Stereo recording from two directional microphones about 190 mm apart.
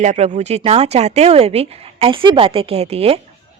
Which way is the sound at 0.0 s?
40° right (ahead or behind).